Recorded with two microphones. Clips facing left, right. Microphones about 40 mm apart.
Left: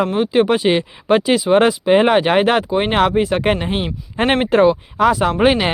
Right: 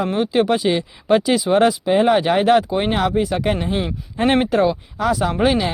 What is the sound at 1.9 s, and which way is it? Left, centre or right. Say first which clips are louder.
Speech: left 2 dB; left.